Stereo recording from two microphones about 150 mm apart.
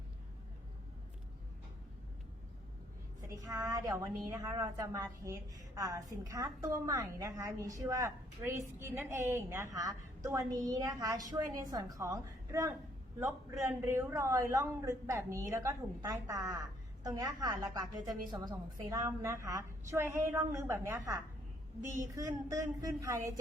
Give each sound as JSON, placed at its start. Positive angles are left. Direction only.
{"t": 3.2, "sound": "a woman's voice", "side_deg": -20}